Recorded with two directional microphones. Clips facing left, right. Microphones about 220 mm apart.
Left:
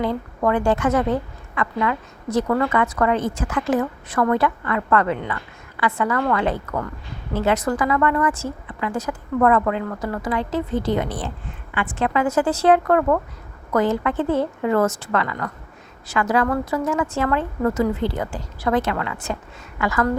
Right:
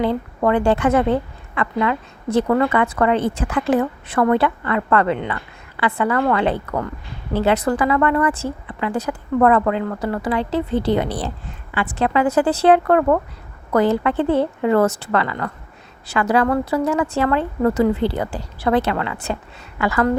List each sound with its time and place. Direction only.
0.0 s a woman's voice: 30° right (ahead or behind)